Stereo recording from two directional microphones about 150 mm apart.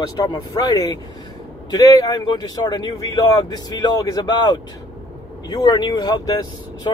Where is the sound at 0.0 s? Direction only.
25° left (ahead or behind).